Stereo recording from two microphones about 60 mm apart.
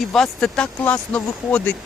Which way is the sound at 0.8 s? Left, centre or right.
Left.